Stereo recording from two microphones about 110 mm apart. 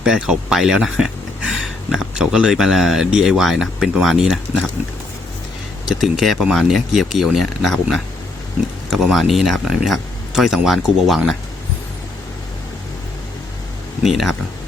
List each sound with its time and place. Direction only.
0.0 s speech: 5° right (ahead or behind)
5.8 s speech: 5° right (ahead or behind)
14.0 s speech: centre (ahead or behind)